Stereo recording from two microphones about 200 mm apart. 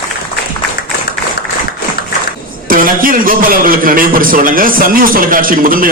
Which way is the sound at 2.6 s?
45° right (ahead or behind).